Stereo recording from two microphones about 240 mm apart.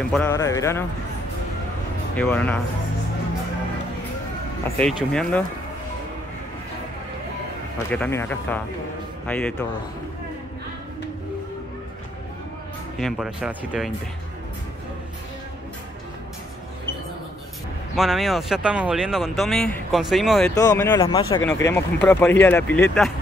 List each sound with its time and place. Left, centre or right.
0.1 s speech: centre
2.1 s speech: centre
4.7 s speech: centre
7.9 s speech: centre
13.0 s speech: centre
17.9 s speech: centre
20.5 s speech: centre
21.4 s speech: centre